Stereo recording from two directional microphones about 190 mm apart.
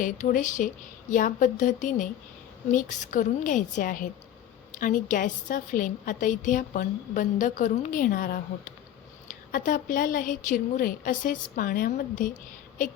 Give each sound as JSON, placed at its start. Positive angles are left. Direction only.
{"t": 0.0, "sound": "a woman's voice", "side_deg": 45}